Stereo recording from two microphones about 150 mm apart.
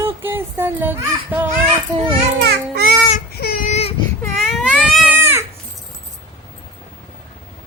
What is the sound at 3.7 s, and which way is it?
Baby cry, 45° left (ahead or behind).